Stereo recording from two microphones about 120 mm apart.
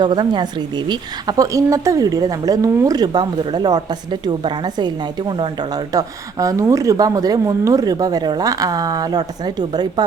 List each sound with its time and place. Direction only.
0.0 s speech: 40° right (ahead or behind)